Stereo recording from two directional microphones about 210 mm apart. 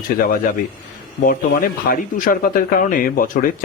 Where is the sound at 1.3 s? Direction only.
45° left (ahead or behind).